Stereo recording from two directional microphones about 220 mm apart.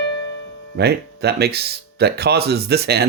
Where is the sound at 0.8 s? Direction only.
45° right (ahead or behind).